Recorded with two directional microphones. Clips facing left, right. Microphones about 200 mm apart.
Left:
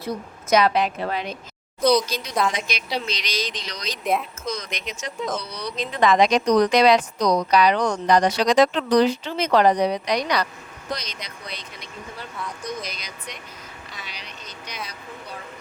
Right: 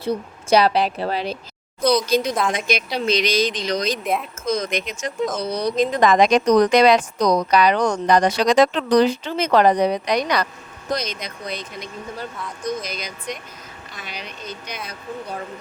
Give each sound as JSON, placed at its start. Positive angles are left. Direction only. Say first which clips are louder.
{"t": 0.0, "sound": "a woman's voice", "louder": "right 5 dB", "side_deg": -30}
{"t": 1.8, "sound": "speech", "louder": "even", "side_deg": -5}
{"t": 2.0, "sound": "speech", "louder": "right 5 dB", "side_deg": -55}